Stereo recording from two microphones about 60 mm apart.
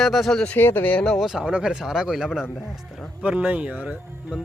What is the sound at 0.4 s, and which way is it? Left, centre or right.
Speech, left.